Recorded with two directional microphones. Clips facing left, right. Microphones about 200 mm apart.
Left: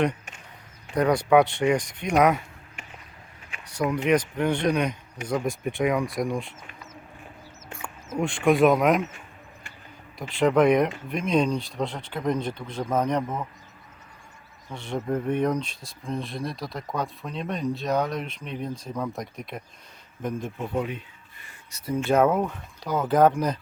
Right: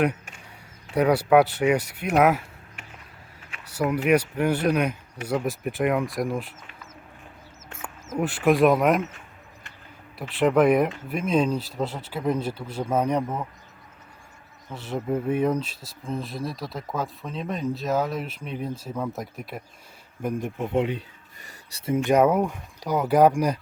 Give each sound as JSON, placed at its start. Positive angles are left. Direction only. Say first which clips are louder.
{"t": 0.9, "sound": "speech", "louder": "right 1 dB", "side_deg": -10}
{"t": 3.7, "sound": "speech", "louder": "right 1 dB", "side_deg": -5}
{"t": 8.2, "sound": "speech", "louder": "even", "side_deg": -5}
{"t": 10.2, "sound": "speech", "louder": "even", "side_deg": -5}
{"t": 14.7, "sound": "speech", "louder": "right 1 dB", "side_deg": -5}
{"t": 20.2, "sound": "speech", "louder": "right 2 dB", "side_deg": -15}